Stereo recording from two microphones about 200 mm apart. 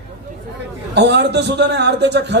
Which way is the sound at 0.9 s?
60° right (ahead or behind).